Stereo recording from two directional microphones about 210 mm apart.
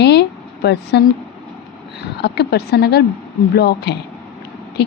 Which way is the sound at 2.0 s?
50° left (ahead or behind).